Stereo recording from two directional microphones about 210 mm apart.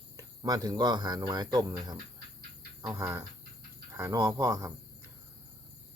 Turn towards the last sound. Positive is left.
turn(degrees=-15)  # may be behind; listen again after turning